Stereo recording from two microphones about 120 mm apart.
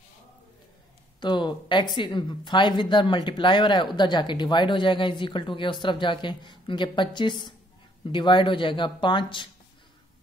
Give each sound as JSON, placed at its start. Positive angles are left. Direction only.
{"t": 1.2, "sound": "speech", "side_deg": 40}